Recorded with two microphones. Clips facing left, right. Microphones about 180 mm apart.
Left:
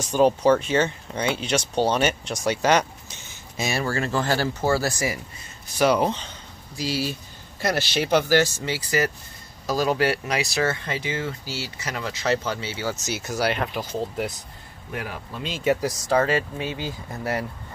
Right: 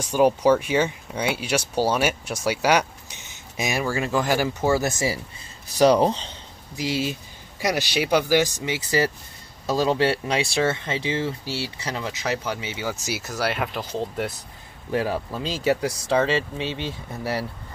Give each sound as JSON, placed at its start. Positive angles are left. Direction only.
{"t": 0.0, "sound": "speech", "side_deg": -10}
{"t": 5.8, "sound": "speech", "side_deg": -35}
{"t": 6.7, "sound": "speech", "side_deg": -20}
{"t": 14.9, "sound": "speech", "side_deg": -30}